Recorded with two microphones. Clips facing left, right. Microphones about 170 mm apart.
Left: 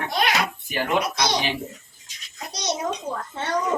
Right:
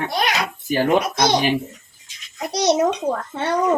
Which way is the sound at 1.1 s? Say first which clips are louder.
Right 6 dB; 50° right (ahead or behind).